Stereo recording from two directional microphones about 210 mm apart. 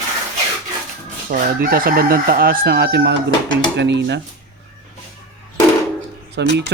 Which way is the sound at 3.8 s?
55° right (ahead or behind).